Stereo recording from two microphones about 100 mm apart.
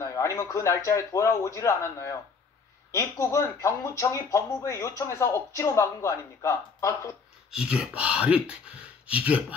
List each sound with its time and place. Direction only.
0.0 s speech: 30° left (ahead or behind)
7.5 s speech: 10° right (ahead or behind)